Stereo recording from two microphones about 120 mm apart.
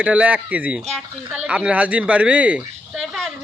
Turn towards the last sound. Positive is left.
turn(degrees=0)  # may be behind; listen again after turning